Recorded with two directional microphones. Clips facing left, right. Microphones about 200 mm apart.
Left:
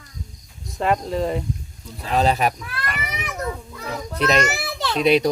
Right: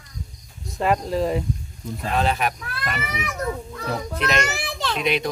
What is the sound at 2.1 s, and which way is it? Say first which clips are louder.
Speech: left 4 dB; 35° left (ahead or behind).